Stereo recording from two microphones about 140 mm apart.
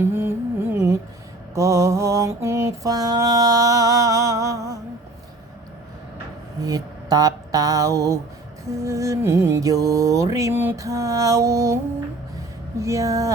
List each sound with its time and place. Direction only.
0.0 s music: 15° right (ahead or behind)
1.5 s mantra: 25° right (ahead or behind)
6.6 s a sound: 25° right (ahead or behind)
8.7 s mantra: 20° right (ahead or behind)
12.8 s mantra: 20° right (ahead or behind)